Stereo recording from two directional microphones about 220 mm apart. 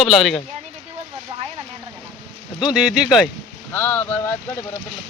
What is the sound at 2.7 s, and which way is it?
Speech, 5° right (ahead or behind).